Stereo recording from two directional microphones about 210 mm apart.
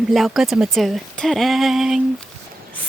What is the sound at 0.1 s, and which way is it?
Speech, centre (ahead or behind).